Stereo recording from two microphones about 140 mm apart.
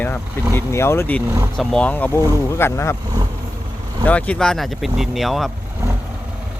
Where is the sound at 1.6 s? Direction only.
5° left (ahead or behind).